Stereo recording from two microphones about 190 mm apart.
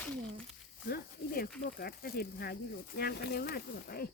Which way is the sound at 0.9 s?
55° left (ahead or behind).